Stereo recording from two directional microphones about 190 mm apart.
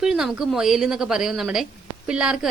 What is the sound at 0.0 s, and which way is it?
Speech, centre (ahead or behind).